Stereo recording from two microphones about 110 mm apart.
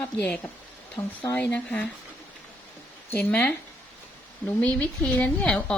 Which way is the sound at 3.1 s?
15° left (ahead or behind).